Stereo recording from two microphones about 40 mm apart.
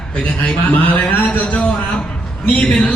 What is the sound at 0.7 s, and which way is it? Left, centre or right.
Speech, left.